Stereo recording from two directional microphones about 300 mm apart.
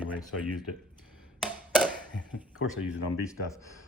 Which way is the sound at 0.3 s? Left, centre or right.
Left.